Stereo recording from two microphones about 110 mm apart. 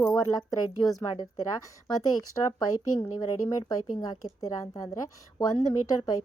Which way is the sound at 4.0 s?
35° left (ahead or behind).